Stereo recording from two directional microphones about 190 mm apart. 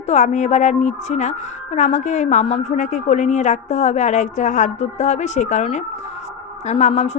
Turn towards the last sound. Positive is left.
turn(degrees=35)  # may be behind; listen again after turning